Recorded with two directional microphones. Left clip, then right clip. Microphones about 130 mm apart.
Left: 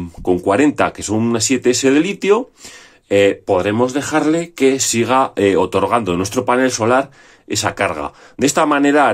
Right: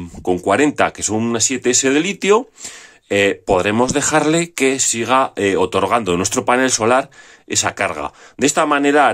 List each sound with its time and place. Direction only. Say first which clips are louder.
0.2 s speech: left 1 dB; 20° right (ahead or behind)
3.4 s speech: even; 35° right (ahead or behind)
5.0 s speech: left 1 dB; 15° right (ahead or behind)